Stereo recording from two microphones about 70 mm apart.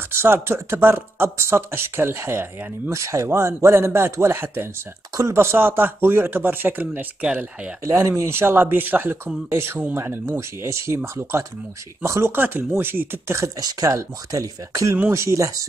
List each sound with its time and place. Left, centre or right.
0.1 s speech: right
2.9 s speech: right; by 7.7 s centre
7.8 s speech: right
12.0 s speech: right
13.6 s speech: right
13.9 s speech: right